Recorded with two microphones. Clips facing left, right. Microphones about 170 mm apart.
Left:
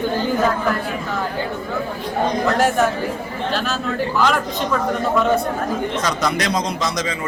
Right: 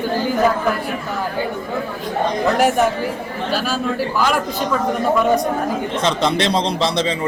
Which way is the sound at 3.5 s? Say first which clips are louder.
Right 3 dB; 10° right (ahead or behind).